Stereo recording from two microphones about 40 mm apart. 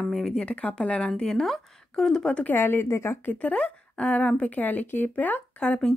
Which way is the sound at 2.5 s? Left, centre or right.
Left.